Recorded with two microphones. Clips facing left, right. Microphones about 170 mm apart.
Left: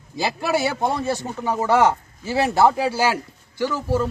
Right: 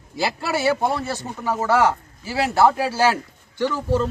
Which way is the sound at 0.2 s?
15° left (ahead or behind).